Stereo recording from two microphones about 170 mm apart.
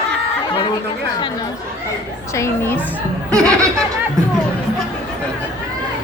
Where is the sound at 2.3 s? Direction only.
15° left (ahead or behind).